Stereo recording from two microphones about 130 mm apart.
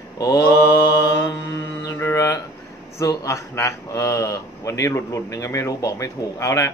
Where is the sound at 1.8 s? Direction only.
20° left (ahead or behind).